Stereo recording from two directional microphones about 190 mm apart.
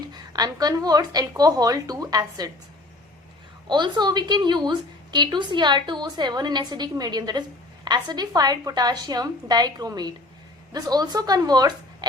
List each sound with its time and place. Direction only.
0.1 s a woman's voice: 20° right (ahead or behind)
3.7 s a woman's voice: 25° right (ahead or behind)